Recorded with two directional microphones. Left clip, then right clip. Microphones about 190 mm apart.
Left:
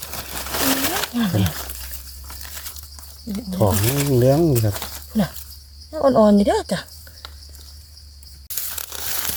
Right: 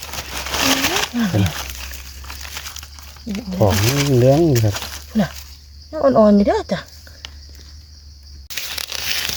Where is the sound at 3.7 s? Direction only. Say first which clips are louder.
Right 4 dB; 20° right (ahead or behind).